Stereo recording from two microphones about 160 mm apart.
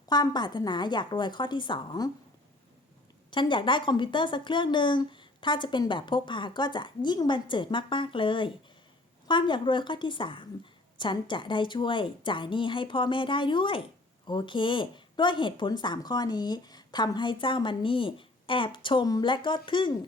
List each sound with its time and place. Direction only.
0.1 s speech: 25° left (ahead or behind)
3.3 s speech: 30° left (ahead or behind)